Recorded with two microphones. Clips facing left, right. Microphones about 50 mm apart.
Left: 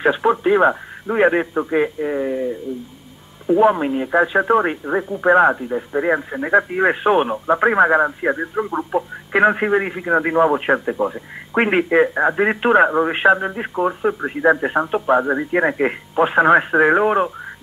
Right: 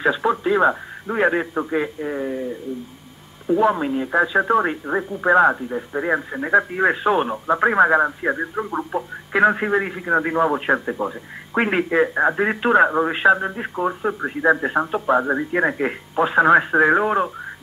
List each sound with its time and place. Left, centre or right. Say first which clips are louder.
0.0 s speech: left 3 dB; left
3.6 s speech: left 3 dB; left
5.7 s speech: left 3 dB; centre; by 7.2 s left
7.4 s speech: even; centre
9.3 s speech: left 2 dB; centre
11.5 s speech: left 3 dB; left
12.1 s speech: left 1 dB; centre
12.4 s speech: left 3 dB; centre